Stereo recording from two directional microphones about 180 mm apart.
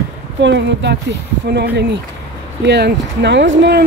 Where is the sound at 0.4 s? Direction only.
75° right (ahead or behind).